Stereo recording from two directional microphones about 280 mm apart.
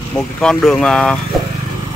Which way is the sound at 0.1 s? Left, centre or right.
Centre.